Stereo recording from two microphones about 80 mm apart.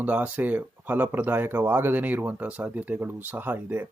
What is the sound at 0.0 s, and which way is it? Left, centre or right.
Speech, right.